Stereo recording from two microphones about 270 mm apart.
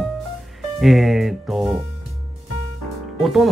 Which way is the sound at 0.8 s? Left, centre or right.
Centre.